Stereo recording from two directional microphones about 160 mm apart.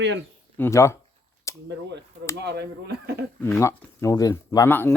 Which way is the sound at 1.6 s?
90° right.